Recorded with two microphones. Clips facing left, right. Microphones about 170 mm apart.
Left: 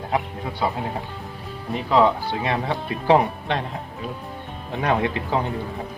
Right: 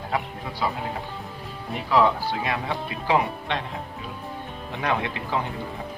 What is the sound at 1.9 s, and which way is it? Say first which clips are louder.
Speech: left 2 dB; 25° left (ahead or behind).